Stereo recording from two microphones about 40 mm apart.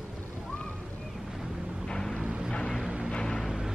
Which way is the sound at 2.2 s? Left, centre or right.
Right.